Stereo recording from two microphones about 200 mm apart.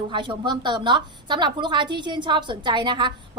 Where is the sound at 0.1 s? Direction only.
25° right (ahead or behind).